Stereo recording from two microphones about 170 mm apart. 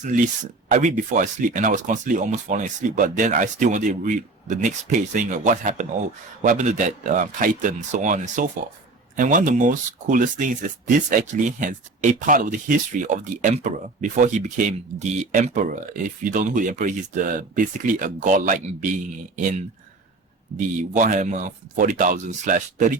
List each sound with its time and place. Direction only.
0.0 s speech: 50° right (ahead or behind)